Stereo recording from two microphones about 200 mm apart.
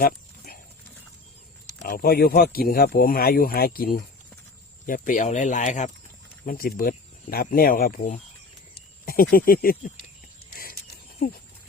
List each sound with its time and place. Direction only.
0.0 s dog: 50° left (ahead or behind)
1.8 s speech: 50° left (ahead or behind)
10.5 s a sound: 45° left (ahead or behind)